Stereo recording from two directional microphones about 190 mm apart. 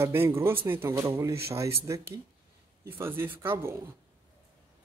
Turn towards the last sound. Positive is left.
turn(degrees=-15)  # may be behind; listen again after turning